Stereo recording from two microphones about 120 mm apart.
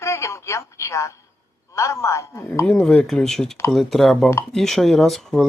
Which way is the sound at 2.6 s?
10° left (ahead or behind).